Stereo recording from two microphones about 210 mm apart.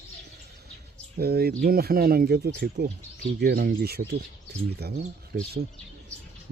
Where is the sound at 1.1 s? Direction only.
50° right (ahead or behind).